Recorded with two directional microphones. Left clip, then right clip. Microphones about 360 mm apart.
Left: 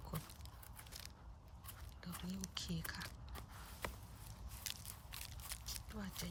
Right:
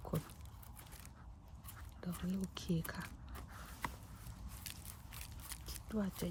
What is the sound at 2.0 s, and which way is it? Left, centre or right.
Speech, centre.